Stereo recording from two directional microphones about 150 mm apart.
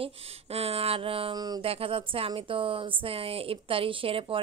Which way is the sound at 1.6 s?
40° right (ahead or behind).